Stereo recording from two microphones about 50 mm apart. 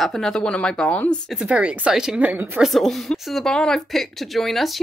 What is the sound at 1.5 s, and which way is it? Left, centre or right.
Speech, right.